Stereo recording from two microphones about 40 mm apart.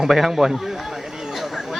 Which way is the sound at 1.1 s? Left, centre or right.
Centre.